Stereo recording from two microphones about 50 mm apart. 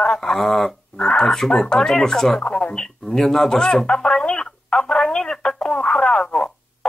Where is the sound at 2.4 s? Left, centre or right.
Left.